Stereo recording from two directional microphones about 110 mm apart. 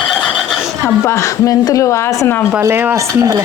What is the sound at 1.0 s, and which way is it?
Speech, 25° left (ahead or behind).